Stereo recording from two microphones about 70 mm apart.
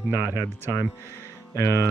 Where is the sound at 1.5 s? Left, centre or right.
Left.